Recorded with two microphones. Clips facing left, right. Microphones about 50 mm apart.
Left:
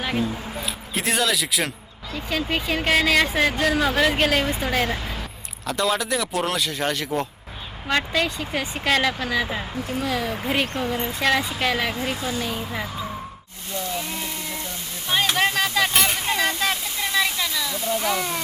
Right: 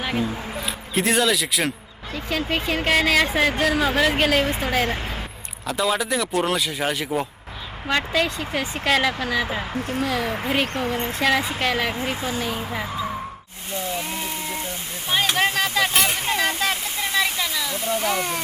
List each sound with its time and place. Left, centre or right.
0.0 s speech: centre
10.2 s speech: right
10.5 s speech: centre
12.1 s speech: right
12.4 s speech: centre
14.0 s a sound: centre
15.1 s speech: centre
17.7 s speech: right
18.0 s speech: centre